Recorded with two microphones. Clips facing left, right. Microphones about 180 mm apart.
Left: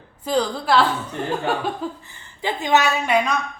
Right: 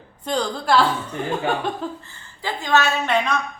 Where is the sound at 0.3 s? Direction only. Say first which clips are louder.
Left 1 dB; 5° left (ahead or behind).